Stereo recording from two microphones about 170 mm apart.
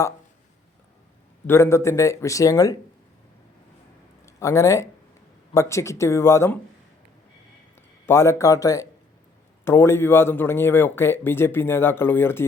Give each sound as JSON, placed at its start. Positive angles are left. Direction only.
{"t": 1.5, "sound": "speech", "side_deg": 15}
{"t": 4.3, "sound": "speech", "side_deg": 20}
{"t": 8.0, "sound": "speech", "side_deg": 15}